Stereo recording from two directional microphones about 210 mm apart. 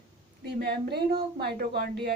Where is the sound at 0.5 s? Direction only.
50° right (ahead or behind).